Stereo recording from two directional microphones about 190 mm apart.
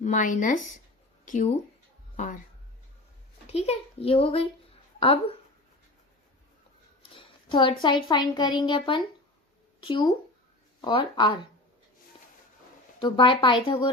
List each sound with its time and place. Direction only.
0.0 s speech: 40° left (ahead or behind)
3.5 s speech: 35° left (ahead or behind)
7.2 s speech: 25° left (ahead or behind)
13.0 s speech: 25° left (ahead or behind)